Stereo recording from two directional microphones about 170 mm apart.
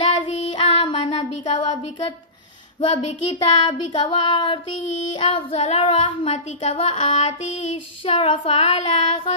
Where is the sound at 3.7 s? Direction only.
30° left (ahead or behind).